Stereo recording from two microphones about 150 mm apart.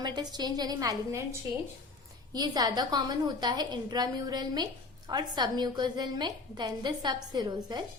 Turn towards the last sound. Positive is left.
turn(degrees=-30)  # may be behind; listen again after turning